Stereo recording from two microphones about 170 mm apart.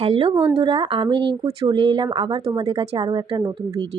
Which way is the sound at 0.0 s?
35° right (ahead or behind).